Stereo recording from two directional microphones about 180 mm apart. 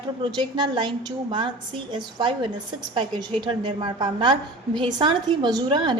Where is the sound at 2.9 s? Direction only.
25° right (ahead or behind).